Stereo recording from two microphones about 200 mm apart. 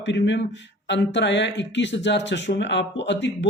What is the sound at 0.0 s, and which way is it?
Speech, 60° left (ahead or behind).